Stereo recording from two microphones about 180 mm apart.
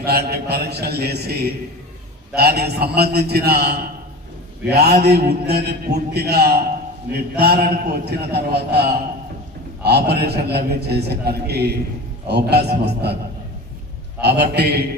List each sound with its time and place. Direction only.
0.0 s a man's voice: 60° right (ahead or behind)
14.2 s a man's voice: 65° right (ahead or behind)